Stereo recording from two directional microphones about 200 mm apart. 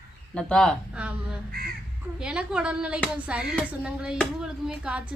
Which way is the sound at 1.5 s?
50° right (ahead or behind).